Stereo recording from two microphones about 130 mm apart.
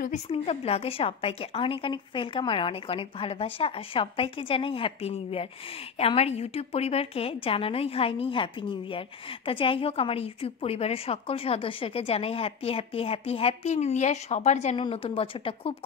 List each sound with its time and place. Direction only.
0.3 s a woman's voice: 50° left (ahead or behind)
14.8 s a woman's voice: 45° left (ahead or behind)